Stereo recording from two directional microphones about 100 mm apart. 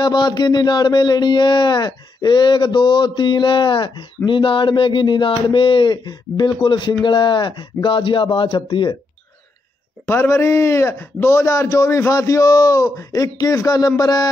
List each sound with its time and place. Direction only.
0.0 s speech: 45° left (ahead or behind)
10.0 s a man's voice: 25° left (ahead or behind); by 14.3 s 40° left (ahead or behind)